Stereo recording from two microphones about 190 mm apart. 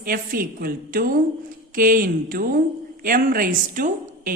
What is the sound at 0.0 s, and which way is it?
A woman's voice, 50° right (ahead or behind).